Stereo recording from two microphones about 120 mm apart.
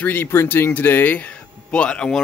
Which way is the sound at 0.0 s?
15° left (ahead or behind).